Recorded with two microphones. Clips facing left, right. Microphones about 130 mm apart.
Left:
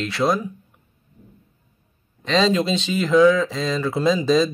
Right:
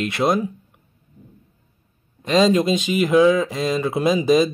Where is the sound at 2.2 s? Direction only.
10° right (ahead or behind).